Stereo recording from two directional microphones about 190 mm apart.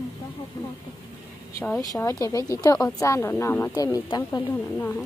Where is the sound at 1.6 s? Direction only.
15° left (ahead or behind).